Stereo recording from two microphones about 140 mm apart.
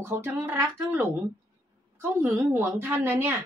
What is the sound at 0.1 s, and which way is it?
A woman's voice, 15° right (ahead or behind).